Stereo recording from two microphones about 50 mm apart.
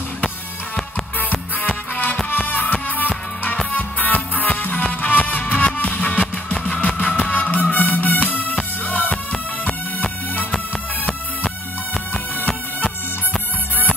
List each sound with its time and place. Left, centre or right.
1.3 s music: left